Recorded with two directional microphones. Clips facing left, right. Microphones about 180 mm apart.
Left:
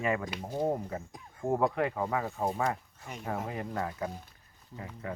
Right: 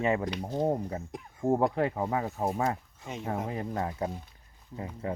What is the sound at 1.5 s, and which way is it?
Speech, 30° right (ahead or behind).